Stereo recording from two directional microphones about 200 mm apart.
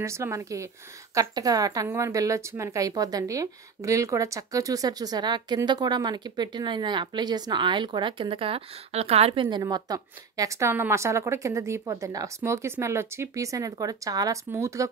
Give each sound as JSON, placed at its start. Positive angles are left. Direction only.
{"t": 0.0, "sound": "a woman's voice", "side_deg": -15}